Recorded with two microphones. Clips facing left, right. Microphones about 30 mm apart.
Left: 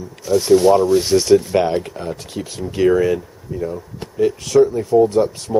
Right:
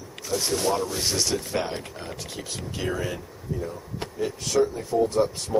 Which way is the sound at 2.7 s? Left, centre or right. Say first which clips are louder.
Left 15 dB; left.